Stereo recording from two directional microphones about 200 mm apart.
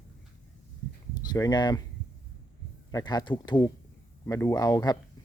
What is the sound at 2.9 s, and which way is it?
Speech, 20° left (ahead or behind).